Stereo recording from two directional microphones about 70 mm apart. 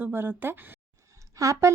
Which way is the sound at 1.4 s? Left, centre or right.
Right.